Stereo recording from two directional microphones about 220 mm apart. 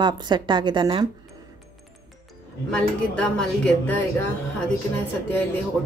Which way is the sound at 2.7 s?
5° left (ahead or behind).